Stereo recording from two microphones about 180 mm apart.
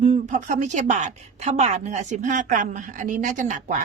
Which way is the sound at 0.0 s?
40° right (ahead or behind).